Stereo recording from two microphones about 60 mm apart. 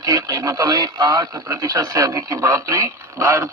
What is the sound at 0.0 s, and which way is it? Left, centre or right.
Speech, right.